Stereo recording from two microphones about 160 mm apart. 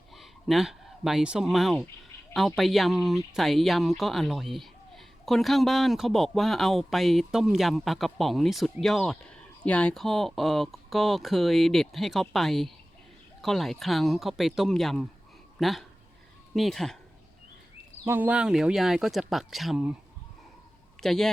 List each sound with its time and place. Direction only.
0.2 s speech: centre (ahead or behind)
18.0 s speech: 10° right (ahead or behind)
21.0 s speech: 5° left (ahead or behind)